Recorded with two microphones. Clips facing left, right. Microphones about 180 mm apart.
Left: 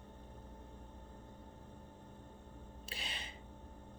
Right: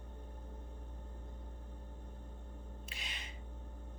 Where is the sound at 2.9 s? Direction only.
35° left (ahead or behind).